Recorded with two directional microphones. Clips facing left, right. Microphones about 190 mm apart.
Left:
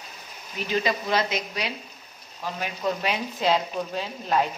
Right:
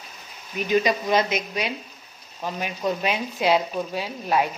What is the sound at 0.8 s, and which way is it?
Speech, 20° right (ahead or behind).